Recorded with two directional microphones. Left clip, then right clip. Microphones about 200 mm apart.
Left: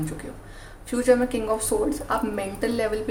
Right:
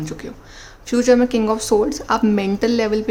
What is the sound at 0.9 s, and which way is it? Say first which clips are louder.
Speech: right 5 dB; 40° right (ahead or behind).